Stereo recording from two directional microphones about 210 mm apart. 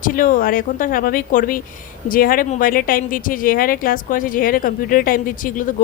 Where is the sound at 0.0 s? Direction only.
40° left (ahead or behind).